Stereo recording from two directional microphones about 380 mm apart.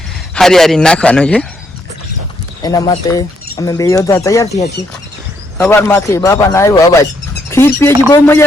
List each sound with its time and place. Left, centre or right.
0.3 s a man's voice: centre
2.6 s speech: centre